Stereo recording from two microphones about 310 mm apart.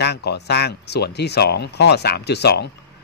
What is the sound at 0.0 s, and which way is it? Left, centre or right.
Speech, left.